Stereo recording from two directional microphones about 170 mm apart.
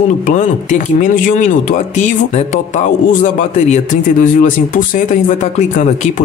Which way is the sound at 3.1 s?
50° left (ahead or behind).